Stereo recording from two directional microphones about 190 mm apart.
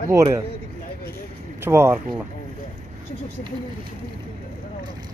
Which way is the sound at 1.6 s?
15° right (ahead or behind).